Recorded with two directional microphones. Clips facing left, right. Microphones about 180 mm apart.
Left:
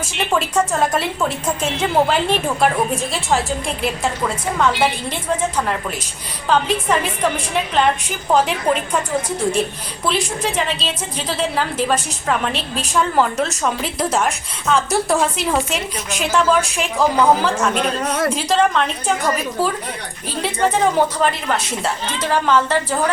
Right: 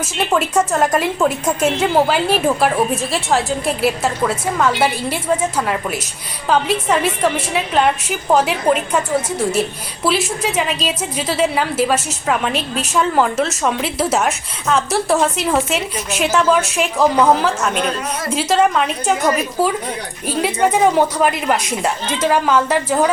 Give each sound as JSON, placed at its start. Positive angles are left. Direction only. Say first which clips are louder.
{"t": 0.3, "sound": "a woman's voice", "louder": "right 2 dB", "side_deg": -10}
{"t": 12.5, "sound": "a woman's voice", "louder": "right 3 dB", "side_deg": 35}
{"t": 12.9, "sound": "a woman's voice", "louder": "right 1 dB", "side_deg": 0}
{"t": 20.2, "sound": "a woman's voice", "louder": "right 3 dB", "side_deg": -10}